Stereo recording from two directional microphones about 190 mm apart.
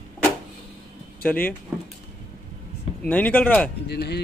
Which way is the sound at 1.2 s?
10° left (ahead or behind).